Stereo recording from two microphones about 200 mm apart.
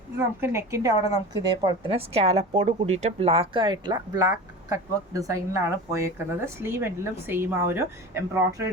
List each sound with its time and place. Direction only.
0.2 s a woman's voice: 10° right (ahead or behind)